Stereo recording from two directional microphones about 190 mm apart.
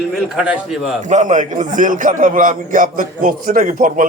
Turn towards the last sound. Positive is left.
turn(degrees=-45)  # may be behind; listen again after turning